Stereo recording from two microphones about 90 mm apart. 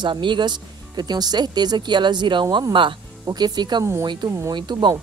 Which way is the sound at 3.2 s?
50° right (ahead or behind).